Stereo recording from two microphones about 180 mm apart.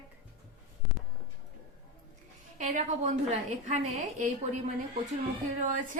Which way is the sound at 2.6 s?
40° right (ahead or behind).